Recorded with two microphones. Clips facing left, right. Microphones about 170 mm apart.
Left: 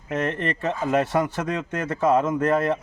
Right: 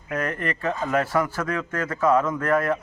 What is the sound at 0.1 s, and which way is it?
A man's voice, 25° left (ahead or behind).